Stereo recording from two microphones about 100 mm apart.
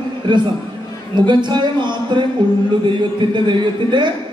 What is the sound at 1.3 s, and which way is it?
Speech, 50° right (ahead or behind).